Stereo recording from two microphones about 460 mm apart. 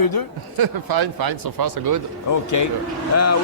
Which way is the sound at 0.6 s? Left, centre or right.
Right.